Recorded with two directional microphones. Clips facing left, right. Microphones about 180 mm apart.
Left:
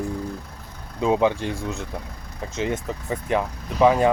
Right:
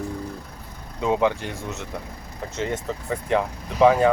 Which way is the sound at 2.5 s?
15° left (ahead or behind).